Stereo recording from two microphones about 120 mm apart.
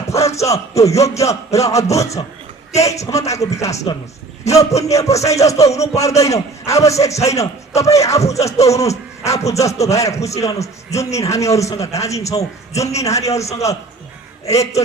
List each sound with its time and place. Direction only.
0.1 s speech: 25° left (ahead or behind)
13.3 s a man's voice: 65° left (ahead or behind)
14.4 s speech: 25° left (ahead or behind)